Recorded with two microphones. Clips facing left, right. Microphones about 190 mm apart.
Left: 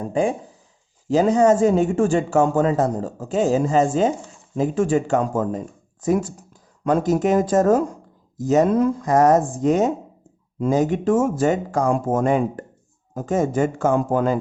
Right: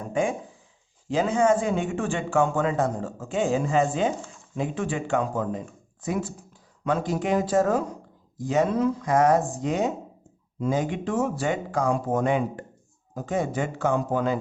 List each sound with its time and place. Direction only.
0.0 s speech: 35° left (ahead or behind); by 14.3 s 50° left (ahead or behind)